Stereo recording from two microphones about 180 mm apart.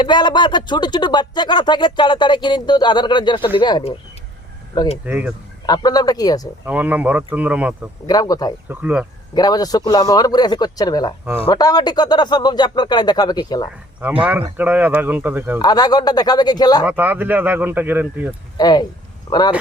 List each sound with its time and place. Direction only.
0.0 s speech: 25° left (ahead or behind)
5.0 s speech: 10° right (ahead or behind)
5.6 s speech: 20° left (ahead or behind)
6.7 s speech: 10° right (ahead or behind)
8.0 s speech: 20° left (ahead or behind)
8.7 s speech: 10° right (ahead or behind)
9.3 s speech: 20° left (ahead or behind)
14.0 s speech: 10° right (ahead or behind)
15.5 s speech: 20° left (ahead or behind)
16.8 s speech: 10° right (ahead or behind)
18.5 s speech: 20° left (ahead or behind)